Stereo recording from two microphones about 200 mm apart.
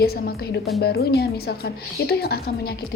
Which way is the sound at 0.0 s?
50° left (ahead or behind).